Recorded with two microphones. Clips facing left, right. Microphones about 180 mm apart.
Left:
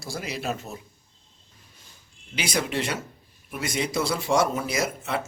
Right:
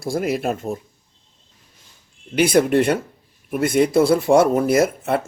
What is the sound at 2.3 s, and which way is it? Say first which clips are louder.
Speech: right 12 dB; 55° right (ahead or behind).